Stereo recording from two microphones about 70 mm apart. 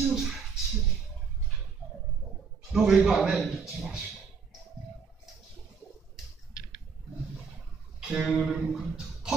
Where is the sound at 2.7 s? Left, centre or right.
Centre.